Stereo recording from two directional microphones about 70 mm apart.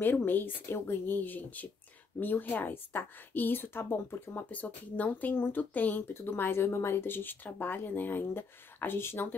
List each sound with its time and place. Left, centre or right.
0.0 s a woman's voice: left